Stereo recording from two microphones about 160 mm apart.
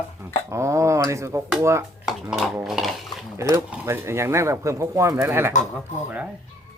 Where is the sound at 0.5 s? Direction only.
20° right (ahead or behind).